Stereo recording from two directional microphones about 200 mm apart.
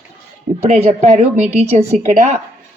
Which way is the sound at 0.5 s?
30° right (ahead or behind).